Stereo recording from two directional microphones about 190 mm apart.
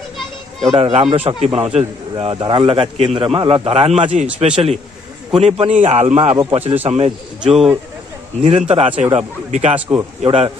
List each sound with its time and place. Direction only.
0.7 s a man's voice: 30° right (ahead or behind)
7.4 s speech: centre (ahead or behind)
8.4 s a man's voice: 30° right (ahead or behind)
9.8 s a man's voice: 10° right (ahead or behind)
10.2 s a man's voice: 30° right (ahead or behind)